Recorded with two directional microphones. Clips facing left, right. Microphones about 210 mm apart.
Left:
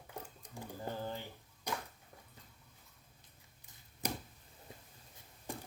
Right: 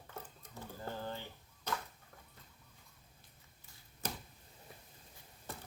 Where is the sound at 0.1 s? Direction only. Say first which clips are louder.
Left 2 dB; 15° left (ahead or behind).